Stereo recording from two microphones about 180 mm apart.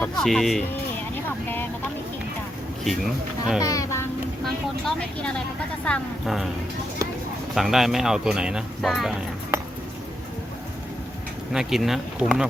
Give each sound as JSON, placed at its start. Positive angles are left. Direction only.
{"t": 0.0, "sound": "speech", "side_deg": 5}
{"t": 2.8, "sound": "speech", "side_deg": 0}
{"t": 3.6, "sound": "speech", "side_deg": 20}
{"t": 4.4, "sound": "speech", "side_deg": 5}
{"t": 7.5, "sound": "speech", "side_deg": 0}
{"t": 11.5, "sound": "speech", "side_deg": 0}